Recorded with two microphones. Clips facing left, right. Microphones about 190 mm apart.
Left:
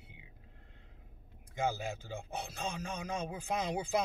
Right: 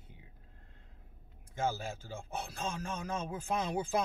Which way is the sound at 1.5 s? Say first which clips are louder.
Even; 15° left (ahead or behind).